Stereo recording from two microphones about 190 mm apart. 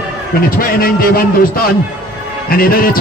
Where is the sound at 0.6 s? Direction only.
50° left (ahead or behind).